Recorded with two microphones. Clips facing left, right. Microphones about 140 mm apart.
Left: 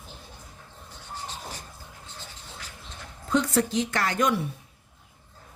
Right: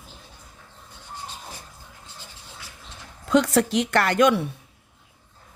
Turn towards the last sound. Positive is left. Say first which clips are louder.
# right 6 dB
turn(degrees=-75)  # may be behind; listen again after turning